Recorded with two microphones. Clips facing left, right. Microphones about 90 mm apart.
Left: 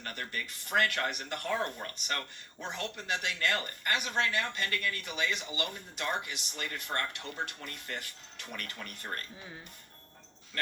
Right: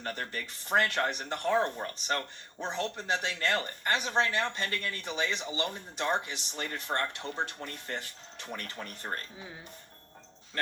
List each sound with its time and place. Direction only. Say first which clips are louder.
0.0 s speech: right 3 dB; 30° right (ahead or behind)